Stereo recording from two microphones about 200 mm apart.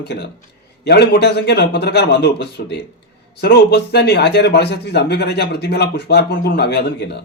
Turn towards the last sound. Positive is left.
turn(degrees=55)  # may be behind; listen again after turning